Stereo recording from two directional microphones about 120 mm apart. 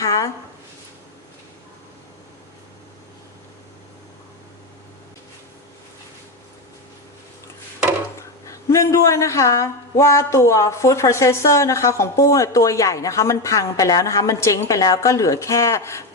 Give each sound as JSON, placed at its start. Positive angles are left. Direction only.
{"t": 8.4, "sound": "speech", "side_deg": 25}